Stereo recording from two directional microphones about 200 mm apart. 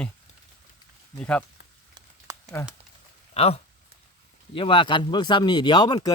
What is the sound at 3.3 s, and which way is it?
Speech, 30° left (ahead or behind).